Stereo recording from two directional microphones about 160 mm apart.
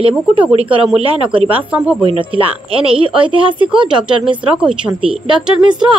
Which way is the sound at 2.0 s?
35° right (ahead or behind).